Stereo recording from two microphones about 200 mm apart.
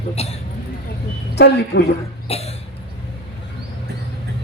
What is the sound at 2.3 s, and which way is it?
Cough, 30° left (ahead or behind).